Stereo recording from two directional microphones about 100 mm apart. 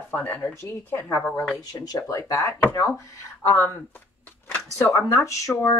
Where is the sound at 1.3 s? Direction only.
40° left (ahead or behind).